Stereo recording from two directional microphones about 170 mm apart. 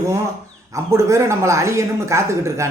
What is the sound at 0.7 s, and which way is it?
A woman's voice, 15° right (ahead or behind).